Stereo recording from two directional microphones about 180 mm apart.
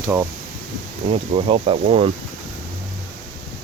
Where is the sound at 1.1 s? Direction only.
35° right (ahead or behind).